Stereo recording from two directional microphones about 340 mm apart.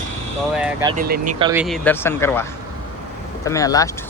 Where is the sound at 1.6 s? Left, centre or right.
Centre.